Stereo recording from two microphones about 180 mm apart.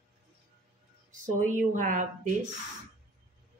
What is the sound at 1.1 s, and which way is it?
A woman's voice, 45° right (ahead or behind).